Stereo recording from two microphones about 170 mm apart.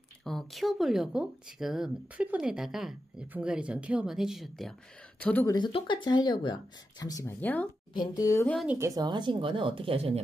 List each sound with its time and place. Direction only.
0.2 s speech: centre (ahead or behind)
5.5 s speech: 30° left (ahead or behind); by 7.7 s 10° left (ahead or behind)
7.9 s speech: 25° left (ahead or behind)
8.7 s speech: 20° right (ahead or behind); by 10.2 s 35° right (ahead or behind)